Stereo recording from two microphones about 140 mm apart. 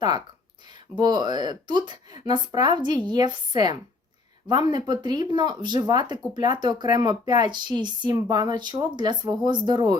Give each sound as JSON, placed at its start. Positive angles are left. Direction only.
{"t": 0.9, "sound": "speech", "side_deg": -30}